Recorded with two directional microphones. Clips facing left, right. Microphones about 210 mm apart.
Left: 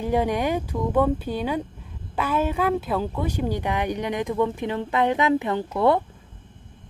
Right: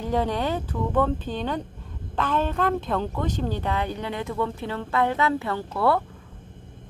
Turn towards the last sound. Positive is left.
turn(degrees=20)  # may be behind; listen again after turning